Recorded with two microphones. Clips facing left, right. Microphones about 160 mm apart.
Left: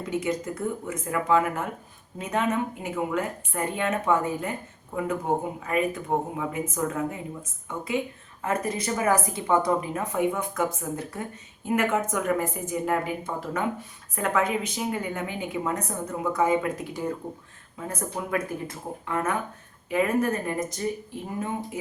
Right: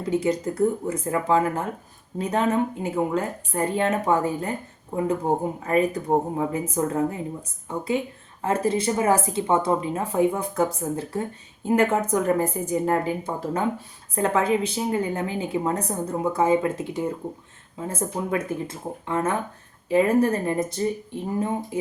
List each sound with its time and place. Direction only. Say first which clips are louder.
0.0 s speech: right 5 dB; 30° right (ahead or behind)
8.4 s speech: right 5 dB; 30° right (ahead or behind)